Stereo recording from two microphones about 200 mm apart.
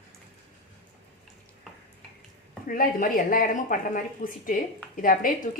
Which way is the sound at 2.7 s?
45° left (ahead or behind).